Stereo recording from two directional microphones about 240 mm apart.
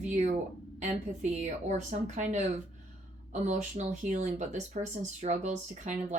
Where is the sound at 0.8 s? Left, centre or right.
Right.